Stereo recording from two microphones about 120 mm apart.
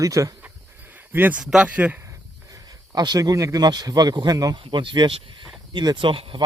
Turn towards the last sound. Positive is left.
turn(degrees=-45)  # may be behind; listen again after turning